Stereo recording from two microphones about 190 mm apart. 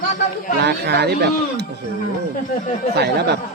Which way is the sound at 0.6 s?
60° right (ahead or behind).